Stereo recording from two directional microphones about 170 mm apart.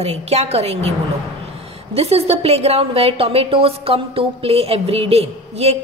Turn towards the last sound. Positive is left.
turn(degrees=-40)  # may be behind; listen again after turning